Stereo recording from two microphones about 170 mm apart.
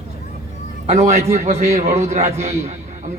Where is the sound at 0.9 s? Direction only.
40° right (ahead or behind).